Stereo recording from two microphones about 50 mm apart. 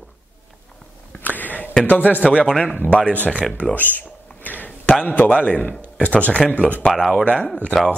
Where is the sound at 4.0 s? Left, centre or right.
Left.